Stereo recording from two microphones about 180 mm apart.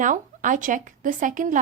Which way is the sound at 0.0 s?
45° right (ahead or behind).